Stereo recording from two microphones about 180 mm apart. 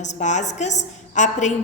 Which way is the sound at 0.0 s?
40° left (ahead or behind).